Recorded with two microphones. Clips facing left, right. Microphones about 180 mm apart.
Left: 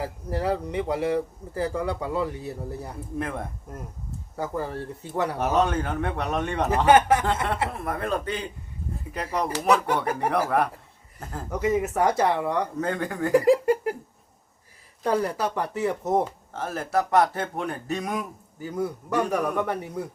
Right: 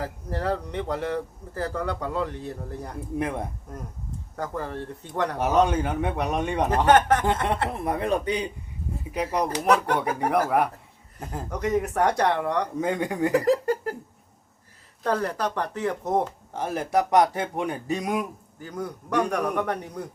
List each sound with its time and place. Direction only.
0.0 s speech: 10° left (ahead or behind)
3.2 s speech: 15° right (ahead or behind)
3.7 s speech: 10° left (ahead or behind)
5.4 s speech: 10° right (ahead or behind)
6.7 s speech: 10° left (ahead or behind)
7.9 s speech: 20° right (ahead or behind)
9.6 s speech: 5° left (ahead or behind)
10.0 s speech: 10° right (ahead or behind)
11.5 s speech: 5° left (ahead or behind)
12.8 s speech: 15° right (ahead or behind)
13.3 s a sound: 10° left (ahead or behind)
15.0 s speech: 10° left (ahead or behind)
16.5 s speech: 15° right (ahead or behind)
18.6 s speech: 5° left (ahead or behind)